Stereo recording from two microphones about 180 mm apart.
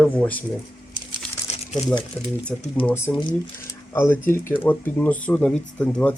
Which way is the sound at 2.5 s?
Centre (ahead or behind).